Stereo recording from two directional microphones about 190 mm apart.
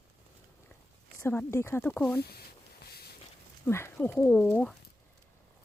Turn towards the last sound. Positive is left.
turn(degrees=5)  # may be behind; listen again after turning